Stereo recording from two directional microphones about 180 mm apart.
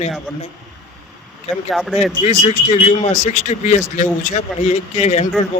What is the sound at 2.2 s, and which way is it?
A man's voice, 40° left (ahead or behind).